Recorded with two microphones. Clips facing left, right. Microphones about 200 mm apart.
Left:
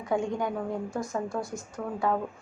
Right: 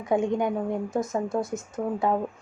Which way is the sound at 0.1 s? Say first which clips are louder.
Right 4 dB; 20° right (ahead or behind).